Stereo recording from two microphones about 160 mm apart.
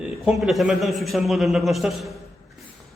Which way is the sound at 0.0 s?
5° right (ahead or behind).